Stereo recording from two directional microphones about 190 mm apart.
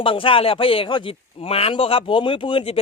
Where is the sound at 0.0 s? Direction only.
30° left (ahead or behind).